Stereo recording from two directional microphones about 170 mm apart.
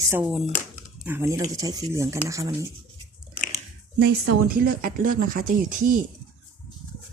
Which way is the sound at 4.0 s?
65° right (ahead or behind).